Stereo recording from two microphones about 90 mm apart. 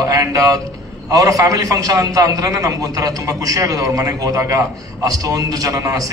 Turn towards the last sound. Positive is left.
turn(degrees=-40)  # may be behind; listen again after turning